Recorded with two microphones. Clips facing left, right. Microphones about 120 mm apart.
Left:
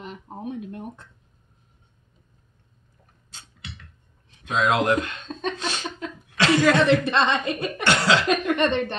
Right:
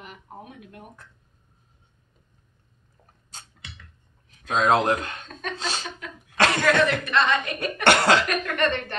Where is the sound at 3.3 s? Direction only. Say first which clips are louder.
Right 3 dB; 45° right (ahead or behind).